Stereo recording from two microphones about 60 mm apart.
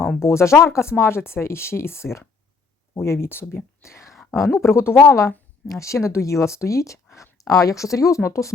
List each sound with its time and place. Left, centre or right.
0.2 s speech: left